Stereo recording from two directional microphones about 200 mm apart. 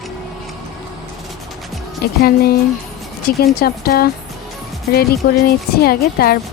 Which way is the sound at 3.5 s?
50° left (ahead or behind).